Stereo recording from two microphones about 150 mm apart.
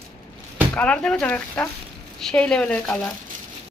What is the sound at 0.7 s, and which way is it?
A woman's voice, 10° left (ahead or behind).